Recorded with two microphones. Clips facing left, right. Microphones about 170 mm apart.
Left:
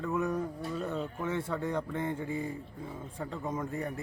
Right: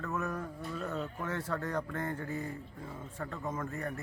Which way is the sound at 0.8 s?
Centre (ahead or behind).